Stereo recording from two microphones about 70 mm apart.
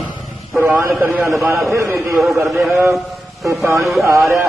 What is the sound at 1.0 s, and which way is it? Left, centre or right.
A man's voice, right.